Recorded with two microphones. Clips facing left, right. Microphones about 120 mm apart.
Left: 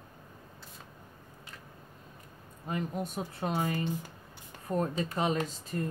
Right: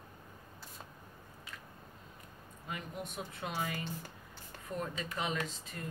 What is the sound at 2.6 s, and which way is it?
Speech, 35° left (ahead or behind).